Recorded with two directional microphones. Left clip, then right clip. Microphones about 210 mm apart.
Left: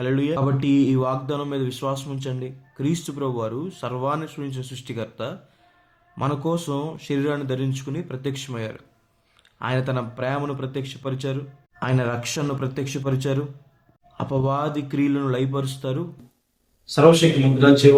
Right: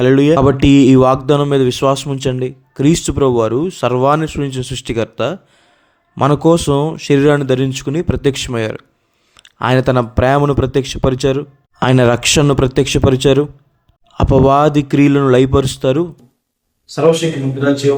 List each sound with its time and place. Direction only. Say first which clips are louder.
0.0 s speech: right 13 dB; 50° right (ahead or behind)
16.8 s speech: right 2 dB; centre (ahead or behind)